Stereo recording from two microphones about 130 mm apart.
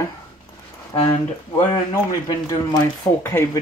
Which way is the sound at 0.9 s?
30° left (ahead or behind).